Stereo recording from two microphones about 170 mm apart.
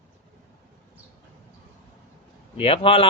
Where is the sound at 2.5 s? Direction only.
35° left (ahead or behind).